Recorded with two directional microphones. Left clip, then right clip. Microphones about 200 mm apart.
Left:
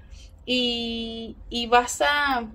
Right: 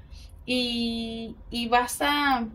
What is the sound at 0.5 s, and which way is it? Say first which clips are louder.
A woman's voice: left 3 dB; 25° left (ahead or behind).